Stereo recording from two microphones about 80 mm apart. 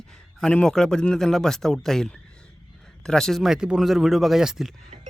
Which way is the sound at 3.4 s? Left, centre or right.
Centre.